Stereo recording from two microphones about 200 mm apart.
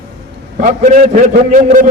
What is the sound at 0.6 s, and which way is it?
A man's voice, 40° right (ahead or behind).